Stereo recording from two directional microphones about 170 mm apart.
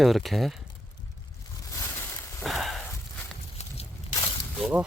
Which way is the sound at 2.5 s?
Centre (ahead or behind).